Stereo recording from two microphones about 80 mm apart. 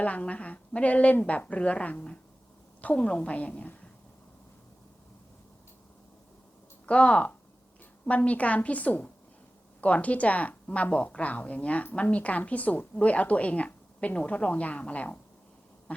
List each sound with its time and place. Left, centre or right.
0.0 s a woman's voice: centre
6.8 s a woman's voice: centre
15.9 s a sound: centre